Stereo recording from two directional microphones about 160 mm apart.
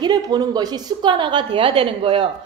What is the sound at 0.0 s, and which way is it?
A woman's voice, 25° right (ahead or behind).